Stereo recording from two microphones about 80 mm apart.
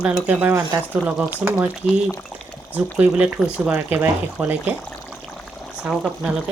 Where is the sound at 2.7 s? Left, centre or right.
Centre.